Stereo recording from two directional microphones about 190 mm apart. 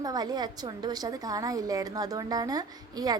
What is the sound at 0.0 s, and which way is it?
A woman's voice, 20° right (ahead or behind).